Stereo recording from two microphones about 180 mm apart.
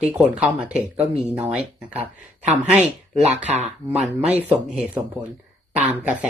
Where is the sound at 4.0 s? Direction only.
5° right (ahead or behind).